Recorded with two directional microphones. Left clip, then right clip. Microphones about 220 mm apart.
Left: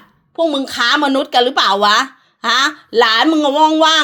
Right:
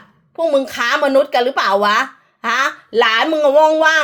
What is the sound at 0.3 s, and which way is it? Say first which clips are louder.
A woman's voice: even; 25° left (ahead or behind).